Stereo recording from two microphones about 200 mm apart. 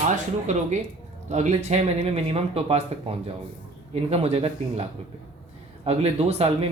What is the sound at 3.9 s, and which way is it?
Speech, 30° right (ahead or behind).